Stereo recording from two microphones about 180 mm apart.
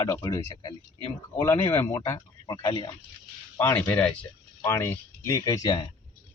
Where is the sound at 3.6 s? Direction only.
10° left (ahead or behind).